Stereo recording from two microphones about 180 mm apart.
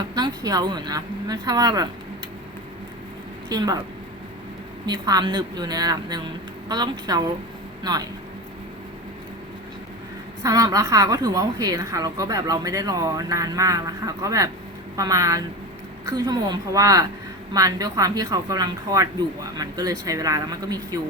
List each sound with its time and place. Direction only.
0.1 s a woman's voice: 20° right (ahead or behind)
3.5 s a woman's voice: 20° right (ahead or behind)
4.9 s a woman's voice: 20° right (ahead or behind)
10.4 s a woman's voice: 20° right (ahead or behind)